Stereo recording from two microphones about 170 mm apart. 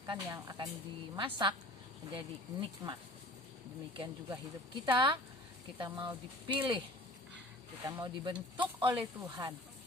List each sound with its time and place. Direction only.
0.0 s speech: 20° right (ahead or behind)
7.9 s speech: 20° right (ahead or behind)